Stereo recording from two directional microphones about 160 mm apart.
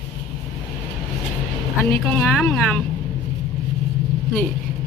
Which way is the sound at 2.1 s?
10° left (ahead or behind).